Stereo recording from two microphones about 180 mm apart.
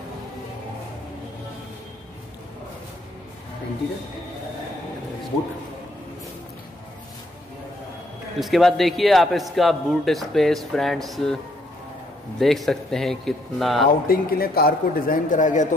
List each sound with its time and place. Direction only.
8.4 s speech: centre (ahead or behind)
12.4 s speech: centre (ahead or behind)
14.0 s speech: 55° left (ahead or behind)